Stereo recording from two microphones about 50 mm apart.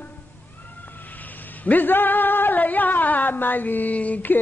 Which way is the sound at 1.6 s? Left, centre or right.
Left.